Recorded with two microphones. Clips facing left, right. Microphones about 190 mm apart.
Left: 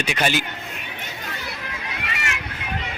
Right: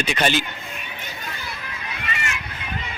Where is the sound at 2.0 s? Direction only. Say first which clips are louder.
Right 2 dB; 70° left (ahead or behind).